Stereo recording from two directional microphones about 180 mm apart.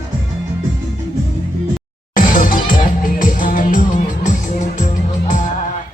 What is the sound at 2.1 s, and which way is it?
Music, 50° left (ahead or behind).